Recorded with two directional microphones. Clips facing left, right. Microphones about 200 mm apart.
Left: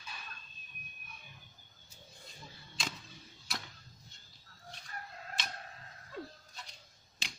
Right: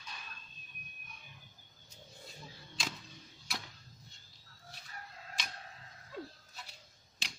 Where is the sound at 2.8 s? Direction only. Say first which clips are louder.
Even; centre (ahead or behind).